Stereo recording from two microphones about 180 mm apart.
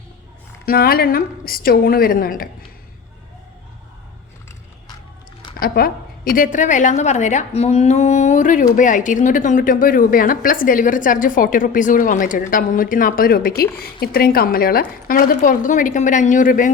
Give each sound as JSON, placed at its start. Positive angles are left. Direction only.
{"t": 0.6, "sound": "a woman's voice", "side_deg": 55}
{"t": 5.5, "sound": "a woman's voice", "side_deg": 55}